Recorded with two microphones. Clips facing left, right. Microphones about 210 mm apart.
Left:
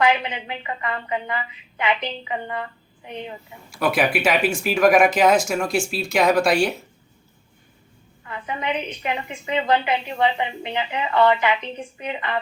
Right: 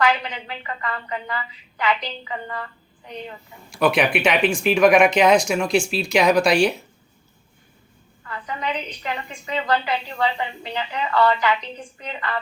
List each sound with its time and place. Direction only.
0.0 s a woman's voice: 20° left (ahead or behind)
3.7 s speech: 5° left (ahead or behind)
8.2 s a woman's voice: 20° left (ahead or behind)